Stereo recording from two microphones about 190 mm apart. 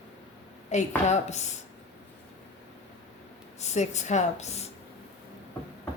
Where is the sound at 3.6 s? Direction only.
35° left (ahead or behind).